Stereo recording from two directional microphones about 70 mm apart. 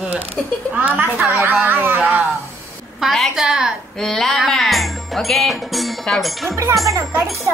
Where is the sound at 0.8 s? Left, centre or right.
Right.